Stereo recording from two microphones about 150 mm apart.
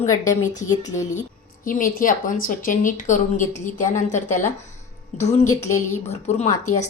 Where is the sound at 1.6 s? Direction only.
65° left (ahead or behind).